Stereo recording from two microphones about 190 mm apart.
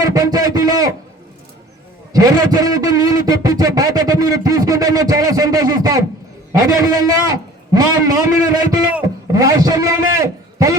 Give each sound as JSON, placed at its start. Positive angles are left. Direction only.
{"t": 0.0, "sound": "a man's voice", "side_deg": -20}
{"t": 2.1, "sound": "a man's voice", "side_deg": -20}